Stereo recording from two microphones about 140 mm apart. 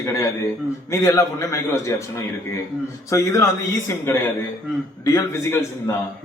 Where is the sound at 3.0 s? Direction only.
20° left (ahead or behind).